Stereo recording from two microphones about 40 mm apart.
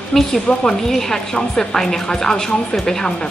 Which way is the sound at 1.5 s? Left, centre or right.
Centre.